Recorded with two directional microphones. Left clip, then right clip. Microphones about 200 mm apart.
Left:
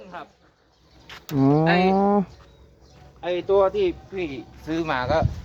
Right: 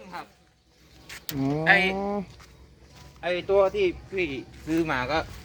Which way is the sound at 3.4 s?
20° left (ahead or behind).